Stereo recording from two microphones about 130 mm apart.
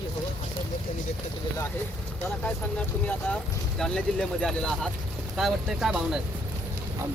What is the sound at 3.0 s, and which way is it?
Speech, 5° left (ahead or behind).